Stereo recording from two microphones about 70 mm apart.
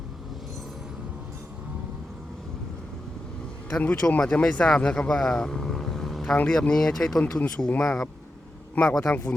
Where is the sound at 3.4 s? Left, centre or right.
Centre.